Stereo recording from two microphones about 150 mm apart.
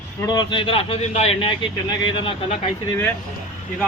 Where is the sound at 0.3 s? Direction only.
30° left (ahead or behind).